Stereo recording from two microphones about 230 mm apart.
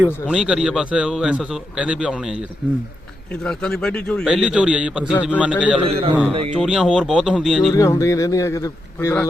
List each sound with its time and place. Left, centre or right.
0.0 s a man's voice: centre
3.4 s a man's voice: centre
5.8 s a man's voice: right
6.5 s a man's voice: centre
7.7 s a man's voice: centre